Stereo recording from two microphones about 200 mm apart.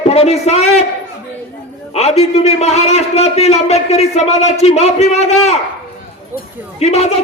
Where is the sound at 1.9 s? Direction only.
30° left (ahead or behind).